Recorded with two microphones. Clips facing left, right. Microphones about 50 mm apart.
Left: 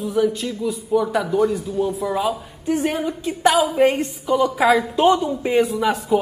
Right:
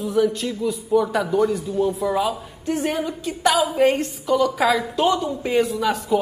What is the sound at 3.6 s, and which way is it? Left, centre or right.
A woman's voice, centre.